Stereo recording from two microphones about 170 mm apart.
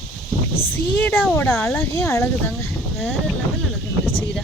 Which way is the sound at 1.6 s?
15° left (ahead or behind).